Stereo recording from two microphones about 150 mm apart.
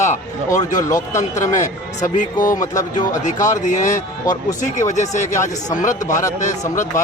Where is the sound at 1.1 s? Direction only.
55° left (ahead or behind).